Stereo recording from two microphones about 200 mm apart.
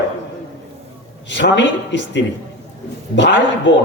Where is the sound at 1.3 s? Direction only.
60° left (ahead or behind).